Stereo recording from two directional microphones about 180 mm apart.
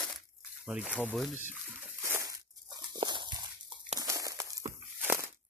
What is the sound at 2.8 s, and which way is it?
Dog, 25° right (ahead or behind).